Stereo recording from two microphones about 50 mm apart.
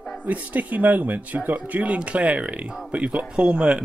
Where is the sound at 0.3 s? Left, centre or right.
Right.